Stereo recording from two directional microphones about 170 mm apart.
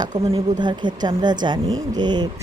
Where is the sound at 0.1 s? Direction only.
25° right (ahead or behind).